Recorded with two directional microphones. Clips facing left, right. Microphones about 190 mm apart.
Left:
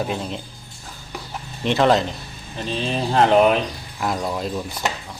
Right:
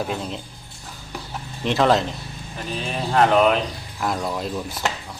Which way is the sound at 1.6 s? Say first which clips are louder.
Left 1 dB; centre (ahead or behind).